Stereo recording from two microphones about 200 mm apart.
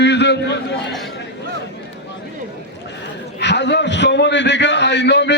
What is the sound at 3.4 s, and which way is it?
A man's voice, 60° left (ahead or behind).